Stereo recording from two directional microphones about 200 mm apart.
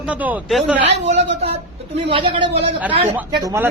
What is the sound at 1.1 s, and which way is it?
A woman's voice, 30° right (ahead or behind).